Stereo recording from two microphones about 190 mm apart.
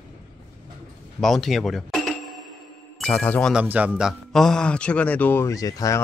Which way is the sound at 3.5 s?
10° right (ahead or behind).